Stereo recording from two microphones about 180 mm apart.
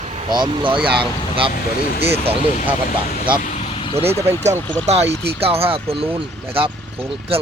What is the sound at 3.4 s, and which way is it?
Vehicle, 40° left (ahead or behind).